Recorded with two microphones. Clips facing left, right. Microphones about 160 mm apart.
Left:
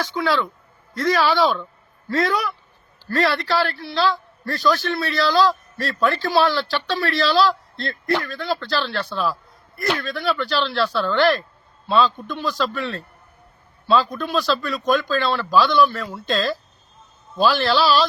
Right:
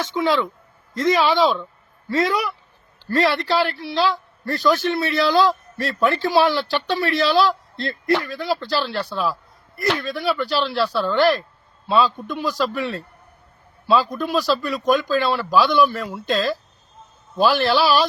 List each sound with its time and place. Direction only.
0.0 s a man's voice: 20° right (ahead or behind)